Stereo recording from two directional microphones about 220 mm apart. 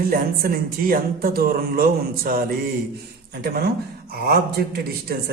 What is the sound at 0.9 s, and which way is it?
Speech, 40° right (ahead or behind).